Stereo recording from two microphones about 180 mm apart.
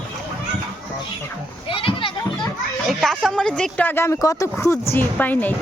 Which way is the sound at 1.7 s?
30° left (ahead or behind).